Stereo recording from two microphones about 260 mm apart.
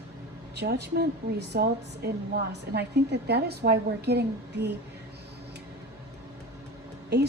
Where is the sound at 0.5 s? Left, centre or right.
Right.